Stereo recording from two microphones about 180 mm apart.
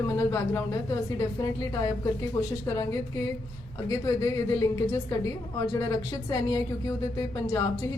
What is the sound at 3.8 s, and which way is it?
A woman's voice, 20° left (ahead or behind).